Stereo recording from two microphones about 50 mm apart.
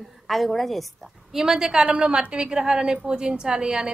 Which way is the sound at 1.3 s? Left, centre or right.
Centre.